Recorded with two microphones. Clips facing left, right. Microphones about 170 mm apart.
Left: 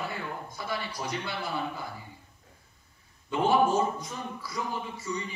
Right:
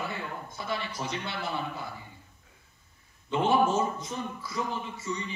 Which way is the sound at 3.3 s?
25° right (ahead or behind).